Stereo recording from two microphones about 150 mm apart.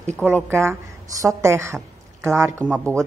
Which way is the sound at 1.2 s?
20° right (ahead or behind).